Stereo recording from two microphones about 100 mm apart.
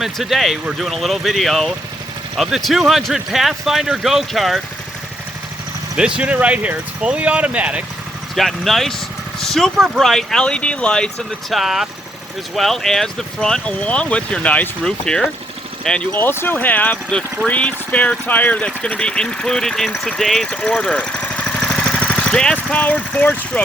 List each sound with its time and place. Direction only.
0.0 s speech: centre (ahead or behind)
6.0 s speech: 10° right (ahead or behind)
8.4 s speech: centre (ahead or behind)
16.1 s speech: 20° left (ahead or behind); by 20.6 s 5° left (ahead or behind)
20.6 s vehicle: 15° left (ahead or behind)
22.7 s speech: 15° left (ahead or behind)